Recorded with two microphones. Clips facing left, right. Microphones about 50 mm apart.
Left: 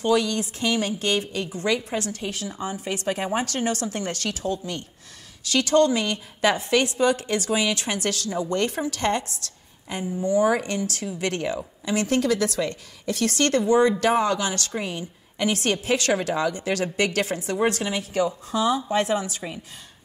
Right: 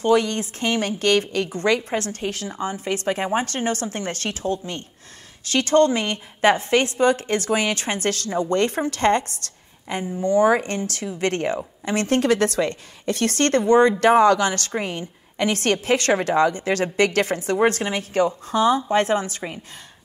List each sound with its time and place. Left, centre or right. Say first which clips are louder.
0.0 s a woman's voice: right 3 dB; right